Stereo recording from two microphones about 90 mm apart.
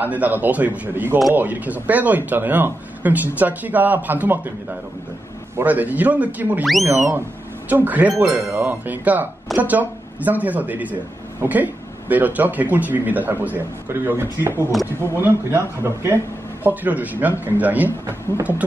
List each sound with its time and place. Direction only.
0.0 s speech: 20° right (ahead or behind)
6.6 s speech: centre (ahead or behind)
7.7 s speech: 20° right (ahead or behind)
16.6 s speech: 20° right (ahead or behind)